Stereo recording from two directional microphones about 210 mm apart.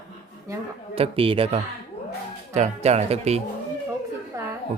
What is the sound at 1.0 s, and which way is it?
Speech, 25° right (ahead or behind).